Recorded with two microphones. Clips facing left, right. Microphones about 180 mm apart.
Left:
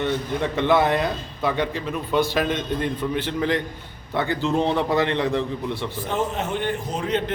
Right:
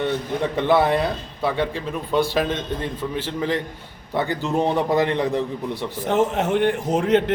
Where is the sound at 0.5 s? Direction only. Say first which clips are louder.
Right 1 dB; 10° right (ahead or behind).